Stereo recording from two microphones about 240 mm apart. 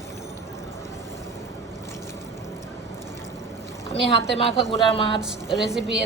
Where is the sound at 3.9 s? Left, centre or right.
Left.